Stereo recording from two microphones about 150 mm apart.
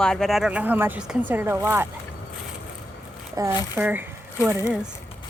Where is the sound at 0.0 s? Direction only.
5° left (ahead or behind); by 1.9 s 15° right (ahead or behind).